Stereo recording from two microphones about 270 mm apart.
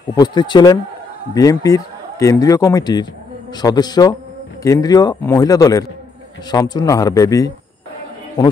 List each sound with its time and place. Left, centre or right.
0.1 s a man's voice: centre